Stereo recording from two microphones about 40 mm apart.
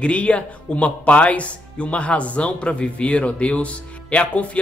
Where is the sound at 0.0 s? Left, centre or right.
Left.